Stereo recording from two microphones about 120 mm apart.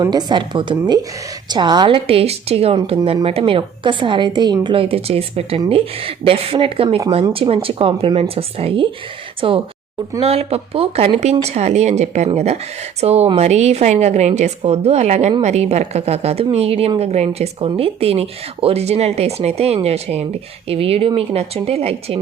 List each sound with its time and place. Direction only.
0.0 s a woman's voice: 35° right (ahead or behind)
2.0 s a woman's voice: 55° right (ahead or behind)